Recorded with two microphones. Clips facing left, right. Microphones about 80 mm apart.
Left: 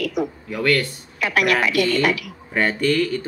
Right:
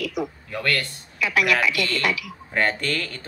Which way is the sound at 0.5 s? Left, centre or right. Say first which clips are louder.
Left 6 dB; centre.